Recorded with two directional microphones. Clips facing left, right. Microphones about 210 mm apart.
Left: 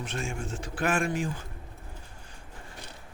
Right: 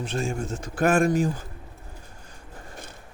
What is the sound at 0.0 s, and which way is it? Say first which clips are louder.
A man's voice: right 6 dB; 35° right (ahead or behind).